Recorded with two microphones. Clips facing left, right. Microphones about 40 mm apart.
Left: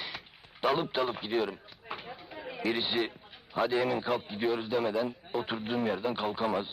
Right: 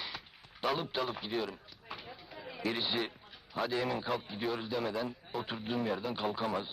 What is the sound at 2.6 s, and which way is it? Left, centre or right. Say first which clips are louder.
Speech: left 4 dB; centre.